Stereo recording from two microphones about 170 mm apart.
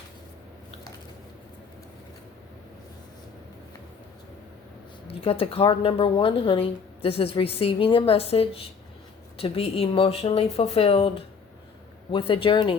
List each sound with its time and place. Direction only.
5.0 s a woman's voice: 35° left (ahead or behind)